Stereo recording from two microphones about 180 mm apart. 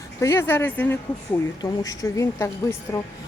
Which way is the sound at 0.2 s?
15° left (ahead or behind).